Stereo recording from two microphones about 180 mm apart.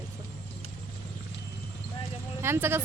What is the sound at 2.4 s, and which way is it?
Speech, 15° right (ahead or behind).